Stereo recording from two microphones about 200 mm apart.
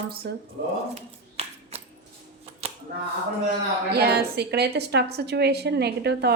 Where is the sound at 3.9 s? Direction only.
55° right (ahead or behind).